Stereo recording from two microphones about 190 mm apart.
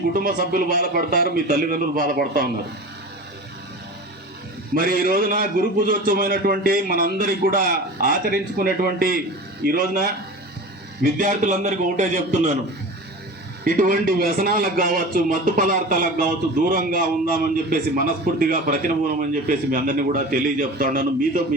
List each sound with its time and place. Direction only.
0.1 s a man's voice: 50° right (ahead or behind)
4.7 s a man's voice: 50° right (ahead or behind)
13.7 s a man's voice: 45° right (ahead or behind)